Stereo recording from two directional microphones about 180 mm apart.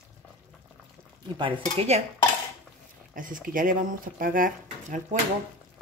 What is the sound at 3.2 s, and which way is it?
Speech, 50° right (ahead or behind).